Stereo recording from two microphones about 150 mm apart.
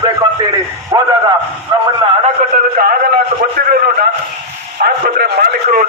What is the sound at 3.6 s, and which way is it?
Speech, 85° right.